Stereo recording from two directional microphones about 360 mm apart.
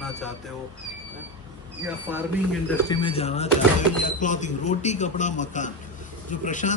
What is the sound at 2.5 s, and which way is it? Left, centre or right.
Speech, centre.